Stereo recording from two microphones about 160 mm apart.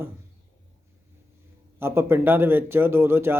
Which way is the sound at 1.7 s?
15° right (ahead or behind).